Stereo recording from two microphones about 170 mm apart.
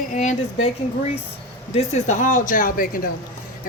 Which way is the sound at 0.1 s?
45° left (ahead or behind).